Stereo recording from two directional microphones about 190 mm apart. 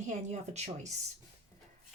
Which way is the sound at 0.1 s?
40° right (ahead or behind).